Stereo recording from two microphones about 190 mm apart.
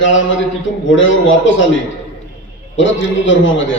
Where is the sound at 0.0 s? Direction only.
80° left.